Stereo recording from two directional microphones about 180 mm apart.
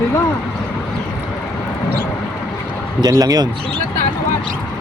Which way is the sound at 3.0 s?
20° right (ahead or behind).